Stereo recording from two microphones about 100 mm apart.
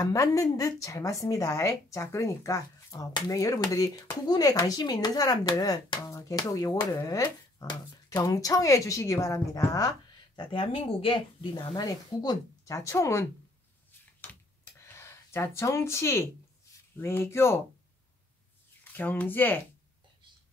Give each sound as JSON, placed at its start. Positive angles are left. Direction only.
{"t": 0.0, "sound": "speech", "side_deg": 35}
{"t": 10.4, "sound": "speech", "side_deg": 55}
{"t": 11.5, "sound": "speech", "side_deg": 40}
{"t": 14.6, "sound": "a sound", "side_deg": 25}
{"t": 16.9, "sound": "speech", "side_deg": 25}
{"t": 18.9, "sound": "speech", "side_deg": 20}